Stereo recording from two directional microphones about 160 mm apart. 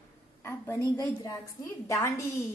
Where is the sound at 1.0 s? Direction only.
20° left (ahead or behind).